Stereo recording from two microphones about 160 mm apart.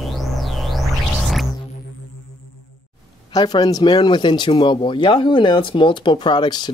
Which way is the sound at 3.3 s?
25° left (ahead or behind).